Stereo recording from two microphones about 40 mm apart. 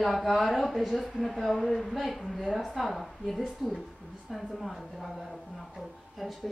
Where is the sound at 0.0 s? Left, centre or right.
Centre.